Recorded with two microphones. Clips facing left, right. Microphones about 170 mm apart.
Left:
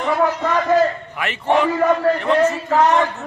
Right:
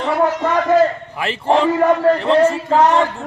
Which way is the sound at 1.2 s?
30° right (ahead or behind).